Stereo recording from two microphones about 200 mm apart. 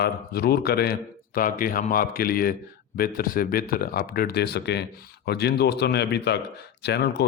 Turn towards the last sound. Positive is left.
turn(degrees=55)  # may be behind; listen again after turning